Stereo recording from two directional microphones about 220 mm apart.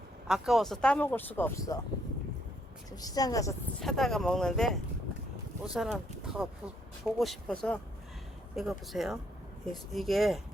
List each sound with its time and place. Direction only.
0.3 s speech: centre (ahead or behind); by 1.8 s 15° left (ahead or behind)
2.9 s speech: 15° left (ahead or behind)
3.8 s speech: centre (ahead or behind)